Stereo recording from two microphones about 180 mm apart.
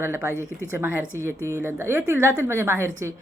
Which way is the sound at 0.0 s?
15° right (ahead or behind).